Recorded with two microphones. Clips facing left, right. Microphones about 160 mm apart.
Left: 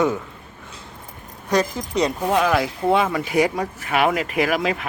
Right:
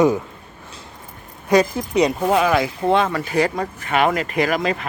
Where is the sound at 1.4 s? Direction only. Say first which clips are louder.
Right 4 dB; 10° right (ahead or behind).